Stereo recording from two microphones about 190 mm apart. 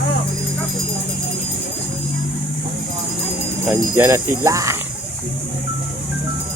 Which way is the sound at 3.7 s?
10° right (ahead or behind).